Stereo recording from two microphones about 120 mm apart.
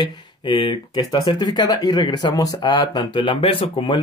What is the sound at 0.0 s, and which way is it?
Speech, 40° left (ahead or behind).